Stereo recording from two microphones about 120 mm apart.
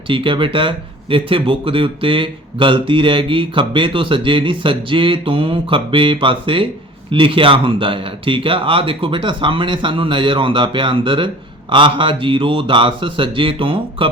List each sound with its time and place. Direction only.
0.1 s speech: 45° right (ahead or behind)